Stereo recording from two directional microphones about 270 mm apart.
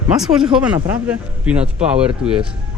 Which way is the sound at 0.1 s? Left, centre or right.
Centre.